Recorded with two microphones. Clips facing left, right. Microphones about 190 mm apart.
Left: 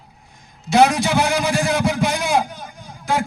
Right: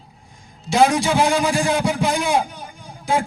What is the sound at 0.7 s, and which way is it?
A man's voice, 70° left (ahead or behind).